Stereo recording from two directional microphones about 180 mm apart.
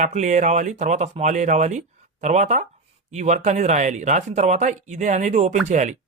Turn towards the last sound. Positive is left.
turn(degrees=-40)  # may be behind; listen again after turning